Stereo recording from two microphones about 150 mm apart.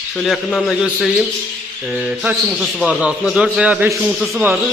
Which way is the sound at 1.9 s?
5° right (ahead or behind).